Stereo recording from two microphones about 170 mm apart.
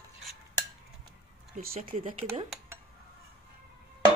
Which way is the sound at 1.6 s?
55° right (ahead or behind).